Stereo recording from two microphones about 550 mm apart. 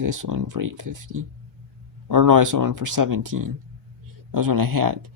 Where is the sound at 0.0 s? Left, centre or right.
Right.